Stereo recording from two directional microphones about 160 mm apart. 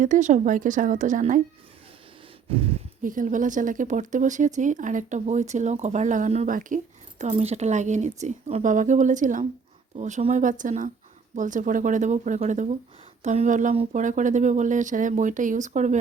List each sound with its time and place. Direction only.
0.0 s speech: 50° right (ahead or behind)
2.5 s a sound: 35° right (ahead or behind)
3.0 s speech: 55° right (ahead or behind)
7.2 s speech: 45° right (ahead or behind)